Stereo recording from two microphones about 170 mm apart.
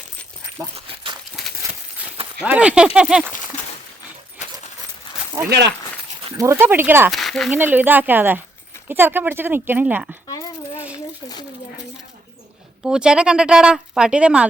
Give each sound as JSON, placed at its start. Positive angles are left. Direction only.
{"t": 1.4, "sound": "a sound", "side_deg": 0}
{"t": 2.4, "sound": "speech", "side_deg": -5}
{"t": 5.5, "sound": "speech", "side_deg": -80}
{"t": 6.3, "sound": "speech", "side_deg": -15}
{"t": 7.1, "sound": "speech", "side_deg": 0}
{"t": 7.5, "sound": "speech", "side_deg": -10}
{"t": 10.2, "sound": "coin", "side_deg": 20}
{"t": 12.8, "sound": "speech", "side_deg": -5}